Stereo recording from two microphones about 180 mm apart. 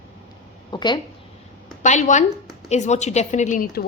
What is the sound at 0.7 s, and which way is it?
Speech, 25° left (ahead or behind).